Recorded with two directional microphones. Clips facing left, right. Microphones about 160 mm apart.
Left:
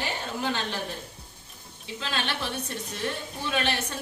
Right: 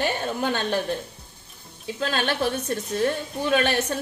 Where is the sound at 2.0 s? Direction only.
45° right (ahead or behind).